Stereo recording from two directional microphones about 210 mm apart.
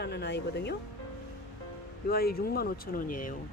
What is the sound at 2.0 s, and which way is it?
Speech, 45° left (ahead or behind).